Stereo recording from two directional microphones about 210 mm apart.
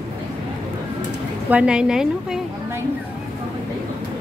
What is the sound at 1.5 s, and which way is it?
A woman's voice, 5° right (ahead or behind).